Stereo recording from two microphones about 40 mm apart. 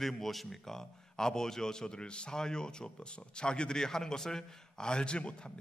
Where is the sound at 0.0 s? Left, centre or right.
Centre.